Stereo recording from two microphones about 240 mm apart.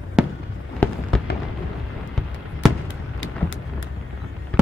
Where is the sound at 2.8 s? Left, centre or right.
Left.